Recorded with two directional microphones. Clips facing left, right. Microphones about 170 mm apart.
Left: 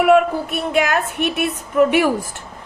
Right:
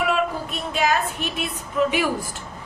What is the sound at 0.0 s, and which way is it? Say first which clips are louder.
A woman's voice: left 9 dB; 60° left (ahead or behind).